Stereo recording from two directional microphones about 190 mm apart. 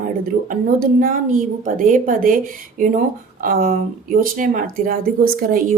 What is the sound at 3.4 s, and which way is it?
Speech, 50° right (ahead or behind).